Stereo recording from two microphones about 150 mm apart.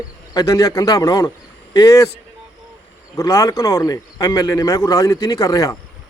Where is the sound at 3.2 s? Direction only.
20° left (ahead or behind).